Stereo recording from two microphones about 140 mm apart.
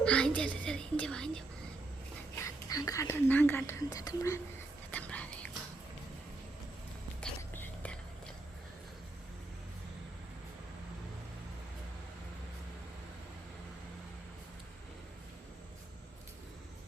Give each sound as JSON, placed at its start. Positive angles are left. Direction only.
{"t": 0.0, "sound": "whispering", "side_deg": 10}
{"t": 2.3, "sound": "whispering", "side_deg": 20}
{"t": 4.9, "sound": "whispering", "side_deg": 10}
{"t": 7.2, "sound": "whispering", "side_deg": 10}